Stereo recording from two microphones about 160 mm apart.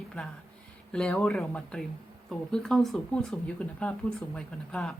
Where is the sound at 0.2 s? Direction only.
10° left (ahead or behind).